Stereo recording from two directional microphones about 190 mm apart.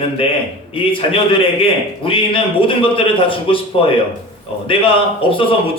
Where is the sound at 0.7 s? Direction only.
30° left (ahead or behind).